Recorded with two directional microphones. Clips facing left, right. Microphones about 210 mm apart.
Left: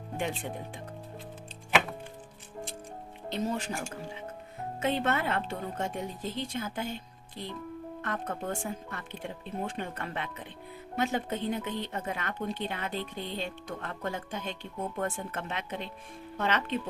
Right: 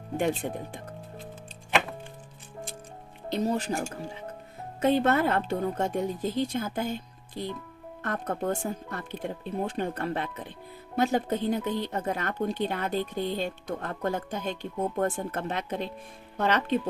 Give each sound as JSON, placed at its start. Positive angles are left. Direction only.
{"t": 0.4, "sound": "speech", "side_deg": -45}
{"t": 3.2, "sound": "speech", "side_deg": -40}
{"t": 8.0, "sound": "speech", "side_deg": -40}